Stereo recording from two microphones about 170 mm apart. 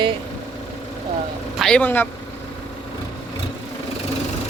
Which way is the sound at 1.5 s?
5° left (ahead or behind).